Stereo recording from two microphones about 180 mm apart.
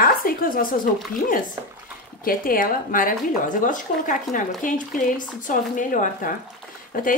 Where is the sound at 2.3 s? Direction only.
50° left (ahead or behind).